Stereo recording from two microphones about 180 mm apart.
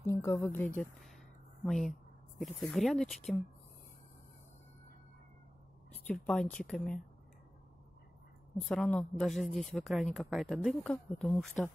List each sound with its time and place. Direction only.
0.0 s speech: 15° left (ahead or behind)
1.7 s speech: centre (ahead or behind)
6.0 s a woman's voice: 5° left (ahead or behind)
8.5 s a woman's voice: 5° left (ahead or behind)